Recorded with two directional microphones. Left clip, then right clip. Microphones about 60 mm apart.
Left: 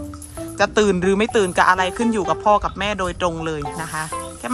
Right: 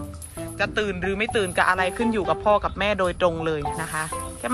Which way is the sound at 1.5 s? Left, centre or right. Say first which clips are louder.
Left 4 dB; left.